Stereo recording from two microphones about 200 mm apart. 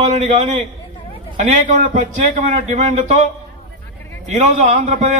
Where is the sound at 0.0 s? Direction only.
35° right (ahead or behind).